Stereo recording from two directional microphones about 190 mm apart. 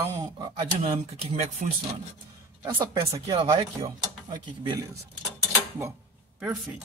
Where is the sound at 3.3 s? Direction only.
25° right (ahead or behind).